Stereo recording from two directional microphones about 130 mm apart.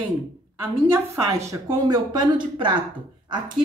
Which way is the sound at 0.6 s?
20° right (ahead or behind).